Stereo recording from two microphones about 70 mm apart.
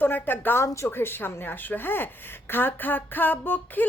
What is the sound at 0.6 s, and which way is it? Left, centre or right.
Speech, left.